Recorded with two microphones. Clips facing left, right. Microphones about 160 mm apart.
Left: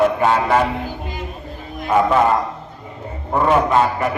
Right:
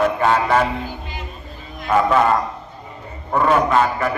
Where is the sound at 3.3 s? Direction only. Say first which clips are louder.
Left 1 dB; 25° left (ahead or behind).